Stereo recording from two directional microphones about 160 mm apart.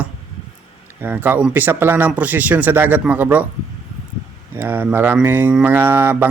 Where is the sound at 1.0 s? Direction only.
10° right (ahead or behind).